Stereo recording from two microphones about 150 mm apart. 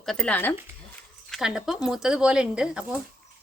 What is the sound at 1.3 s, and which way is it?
A woman's voice, 5° right (ahead or behind).